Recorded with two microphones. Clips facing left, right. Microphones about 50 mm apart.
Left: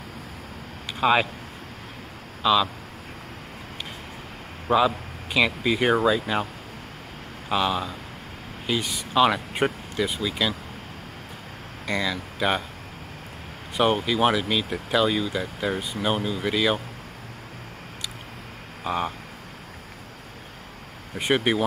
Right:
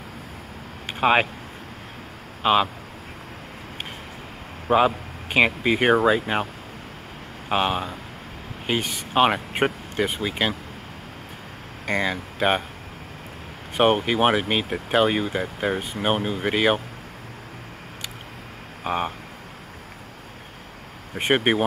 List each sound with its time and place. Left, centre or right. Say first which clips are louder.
0.8 s a sound: right 2 dB; right
2.4 s speech: right 1 dB; right
4.6 s speech: right 2 dB; right
7.4 s speech: right 1 dB; right
11.8 s speech: right 2 dB; right
13.7 s speech: right 2 dB; right
18.9 s speech: right 1 dB; right
21.1 s speech: right 2 dB; right